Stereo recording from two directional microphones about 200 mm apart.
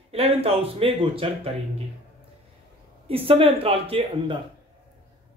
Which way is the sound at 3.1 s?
30° right (ahead or behind).